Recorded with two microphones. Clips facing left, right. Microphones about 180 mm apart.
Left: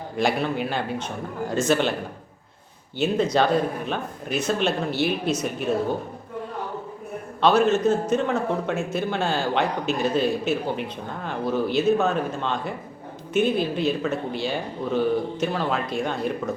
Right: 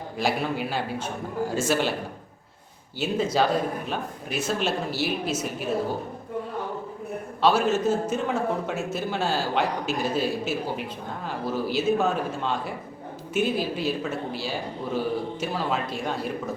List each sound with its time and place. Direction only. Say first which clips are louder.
0.2 s a man's voice: left 3 dB; 5° right (ahead or behind)
3.0 s a man's voice: left 3 dB; 5° right (ahead or behind)
7.4 s a man's voice: left 3 dB; 5° right (ahead or behind)